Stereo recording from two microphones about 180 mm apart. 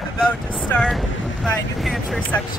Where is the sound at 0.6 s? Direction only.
5° left (ahead or behind).